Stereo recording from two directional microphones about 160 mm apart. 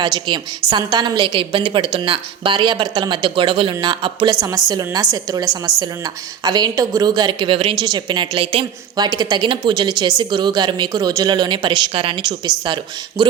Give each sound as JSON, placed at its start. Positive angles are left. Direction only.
{"t": 0.0, "sound": "a woman's voice", "side_deg": -30}